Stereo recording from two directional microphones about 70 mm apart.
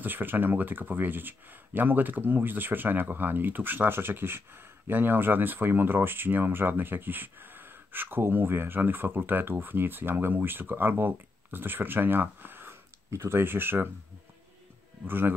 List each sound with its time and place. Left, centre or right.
0.0 s speech: right
15.0 s a man's voice: right